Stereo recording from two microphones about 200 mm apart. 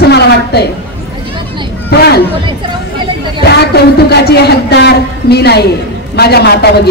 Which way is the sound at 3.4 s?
55° left (ahead or behind).